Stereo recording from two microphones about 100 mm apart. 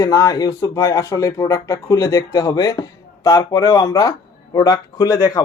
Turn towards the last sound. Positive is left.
turn(degrees=40)  # may be behind; listen again after turning